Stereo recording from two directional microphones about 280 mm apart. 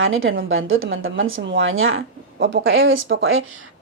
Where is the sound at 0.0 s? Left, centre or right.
Right.